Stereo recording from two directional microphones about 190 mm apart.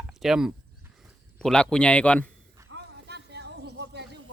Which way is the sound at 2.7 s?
60° right (ahead or behind).